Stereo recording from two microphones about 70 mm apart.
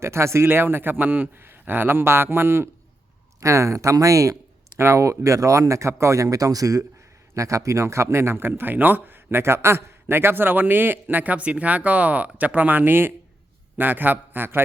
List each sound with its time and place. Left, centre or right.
0.0 s a man's voice: right